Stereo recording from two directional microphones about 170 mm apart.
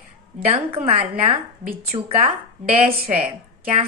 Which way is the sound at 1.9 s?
35° right (ahead or behind).